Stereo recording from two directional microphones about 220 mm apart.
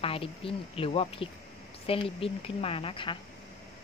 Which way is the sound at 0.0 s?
25° left (ahead or behind).